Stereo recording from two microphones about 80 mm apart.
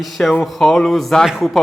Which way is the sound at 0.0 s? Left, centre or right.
Centre.